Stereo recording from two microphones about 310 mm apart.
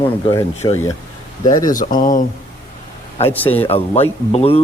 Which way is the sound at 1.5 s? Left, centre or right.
Left.